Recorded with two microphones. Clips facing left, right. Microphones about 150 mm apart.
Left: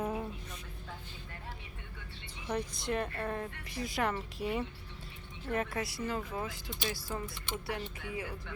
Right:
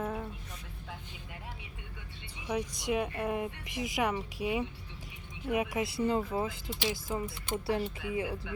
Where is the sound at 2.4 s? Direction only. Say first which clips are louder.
Right 2 dB; 10° right (ahead or behind).